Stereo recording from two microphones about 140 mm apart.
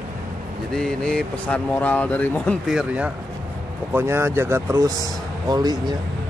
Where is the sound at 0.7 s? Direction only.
5° left (ahead or behind).